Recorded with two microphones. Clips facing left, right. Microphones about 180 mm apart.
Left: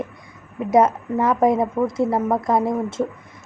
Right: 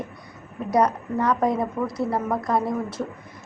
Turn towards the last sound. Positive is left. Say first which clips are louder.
# left 4 dB
turn(degrees=25)  # may be behind; listen again after turning